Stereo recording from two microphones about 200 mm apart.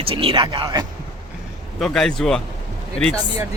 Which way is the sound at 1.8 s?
Centre (ahead or behind).